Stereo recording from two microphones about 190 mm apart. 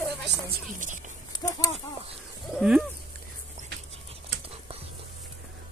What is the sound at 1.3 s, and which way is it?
Speech, 20° left (ahead or behind).